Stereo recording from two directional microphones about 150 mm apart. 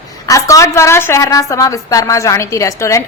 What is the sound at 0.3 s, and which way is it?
A woman's voice, 20° left (ahead or behind).